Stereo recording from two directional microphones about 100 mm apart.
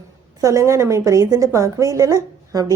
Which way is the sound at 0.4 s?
30° right (ahead or behind).